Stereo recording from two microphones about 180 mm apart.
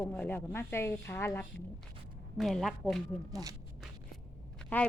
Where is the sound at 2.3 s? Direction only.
Centre (ahead or behind).